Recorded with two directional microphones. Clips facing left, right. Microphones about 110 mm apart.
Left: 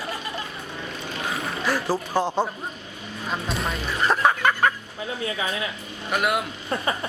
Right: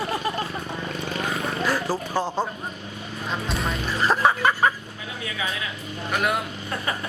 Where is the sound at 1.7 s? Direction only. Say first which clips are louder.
Left 4 dB; 15° left (ahead or behind).